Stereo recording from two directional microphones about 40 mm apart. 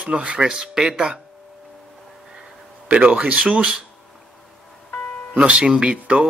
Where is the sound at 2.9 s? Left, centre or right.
Right.